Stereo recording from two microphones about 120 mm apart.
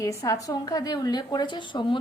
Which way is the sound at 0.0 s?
25° left (ahead or behind).